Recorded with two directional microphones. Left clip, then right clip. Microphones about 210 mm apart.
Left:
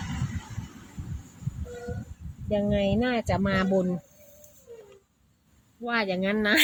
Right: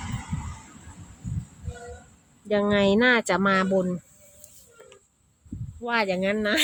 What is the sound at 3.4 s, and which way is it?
Speech, 10° right (ahead or behind).